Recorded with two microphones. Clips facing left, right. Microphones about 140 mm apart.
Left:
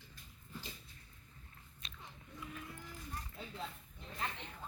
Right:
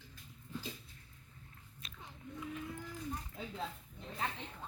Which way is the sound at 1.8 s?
5° right (ahead or behind).